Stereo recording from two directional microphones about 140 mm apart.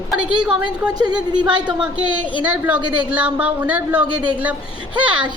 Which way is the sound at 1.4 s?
35° right (ahead or behind).